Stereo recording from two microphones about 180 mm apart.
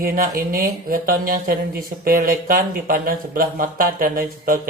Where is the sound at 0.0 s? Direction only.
55° right (ahead or behind).